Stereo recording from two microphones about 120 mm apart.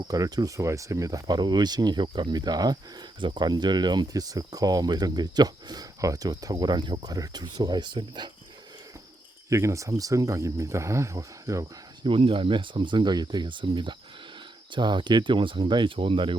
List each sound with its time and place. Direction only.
0.0 s speech: 30° right (ahead or behind)
9.5 s speech: 25° right (ahead or behind)
12.0 s speech: 45° right (ahead or behind)